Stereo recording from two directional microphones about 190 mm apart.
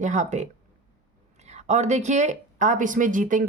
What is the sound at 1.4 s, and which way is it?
Speech, 35° right (ahead or behind).